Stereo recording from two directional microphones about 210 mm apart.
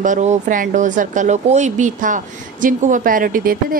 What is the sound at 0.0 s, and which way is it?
Speech, 35° right (ahead or behind).